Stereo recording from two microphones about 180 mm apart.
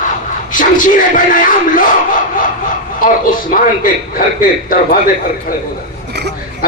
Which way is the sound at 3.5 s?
50° left (ahead or behind).